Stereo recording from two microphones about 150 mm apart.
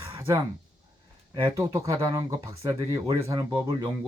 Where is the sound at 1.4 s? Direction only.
20° right (ahead or behind).